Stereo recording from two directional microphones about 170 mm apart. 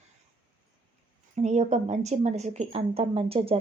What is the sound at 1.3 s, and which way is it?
Speech, 40° right (ahead or behind).